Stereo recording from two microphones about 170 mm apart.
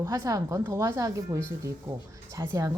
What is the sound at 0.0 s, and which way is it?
A woman's voice, 20° right (ahead or behind).